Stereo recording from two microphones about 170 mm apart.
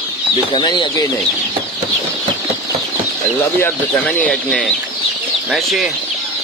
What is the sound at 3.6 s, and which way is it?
Speech, 10° left (ahead or behind).